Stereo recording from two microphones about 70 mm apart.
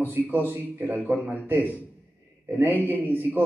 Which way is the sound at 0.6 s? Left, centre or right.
Right.